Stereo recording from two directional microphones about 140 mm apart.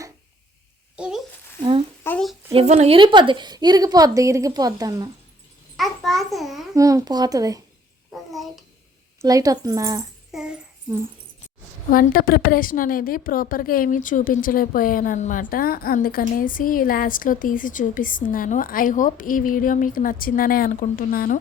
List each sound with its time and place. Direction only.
0.9 s a sound: 5° right (ahead or behind)
2.0 s a sound: 15° left (ahead or behind)
2.5 s speech: 50° right (ahead or behind)
3.0 s a woman's voice: 35° right (ahead or behind)
5.7 s babbling: centre (ahead or behind)
6.7 s a woman's voice: 25° right (ahead or behind)
8.1 s a sound: centre (ahead or behind)
9.2 s a woman's voice: 25° right (ahead or behind)
10.3 s speech: centre (ahead or behind)
11.9 s a woman's voice: 90° left